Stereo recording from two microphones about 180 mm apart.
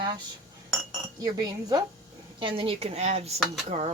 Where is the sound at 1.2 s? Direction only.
20° right (ahead or behind).